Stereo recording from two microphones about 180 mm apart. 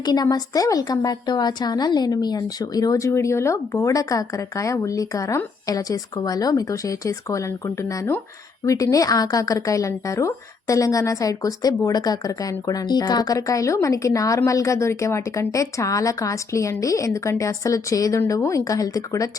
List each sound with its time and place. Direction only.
0.0 s a woman's voice: 20° left (ahead or behind)